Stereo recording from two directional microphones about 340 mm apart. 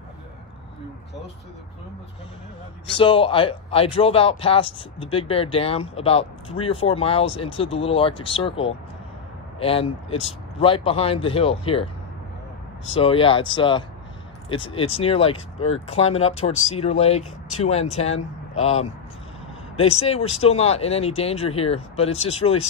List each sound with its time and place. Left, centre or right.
2.9 s a man's voice: centre
12.9 s a man's voice: centre